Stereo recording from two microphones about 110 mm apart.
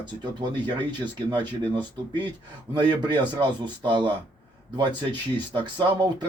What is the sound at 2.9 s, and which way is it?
Speech, 40° right (ahead or behind).